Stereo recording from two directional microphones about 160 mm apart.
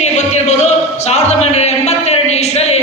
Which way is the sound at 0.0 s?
45° left (ahead or behind).